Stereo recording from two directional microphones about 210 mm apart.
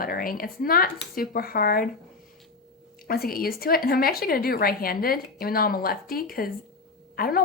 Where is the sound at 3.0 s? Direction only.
45° left (ahead or behind).